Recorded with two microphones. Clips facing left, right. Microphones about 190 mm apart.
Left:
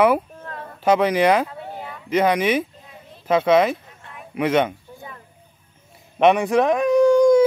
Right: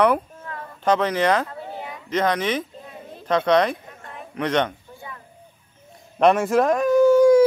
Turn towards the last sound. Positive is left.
turn(degrees=-5)  # may be behind; listen again after turning